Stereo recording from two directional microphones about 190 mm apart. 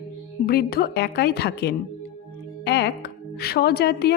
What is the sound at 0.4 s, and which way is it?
A woman's voice, 55° left (ahead or behind).